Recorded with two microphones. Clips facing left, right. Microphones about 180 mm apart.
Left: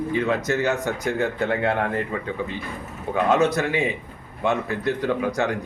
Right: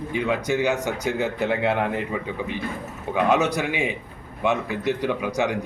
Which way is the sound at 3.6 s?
5° right (ahead or behind).